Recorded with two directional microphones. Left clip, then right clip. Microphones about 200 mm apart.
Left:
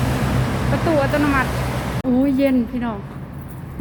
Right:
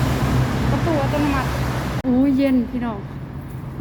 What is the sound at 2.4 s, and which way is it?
Speech, 10° left (ahead or behind).